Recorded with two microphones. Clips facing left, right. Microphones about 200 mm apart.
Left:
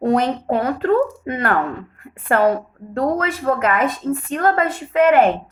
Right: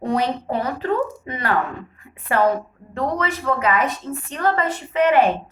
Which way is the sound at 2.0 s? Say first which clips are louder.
Left 3 dB; 55° left (ahead or behind).